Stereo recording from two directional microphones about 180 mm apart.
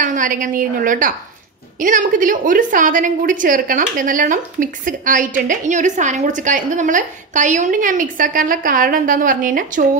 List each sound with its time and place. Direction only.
0.0 s a woman's voice: 45° right (ahead or behind)